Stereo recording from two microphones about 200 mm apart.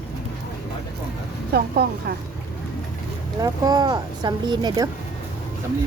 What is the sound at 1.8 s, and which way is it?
Speech, 55° right (ahead or behind).